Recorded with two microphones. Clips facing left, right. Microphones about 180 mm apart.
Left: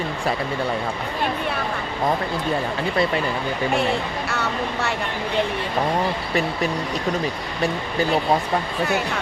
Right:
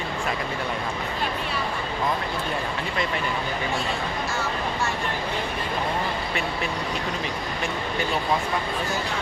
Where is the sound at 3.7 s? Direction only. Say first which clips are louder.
Left 5 dB; 65° left (ahead or behind).